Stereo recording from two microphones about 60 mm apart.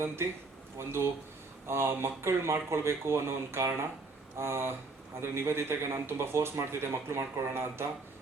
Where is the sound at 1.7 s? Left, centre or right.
Right.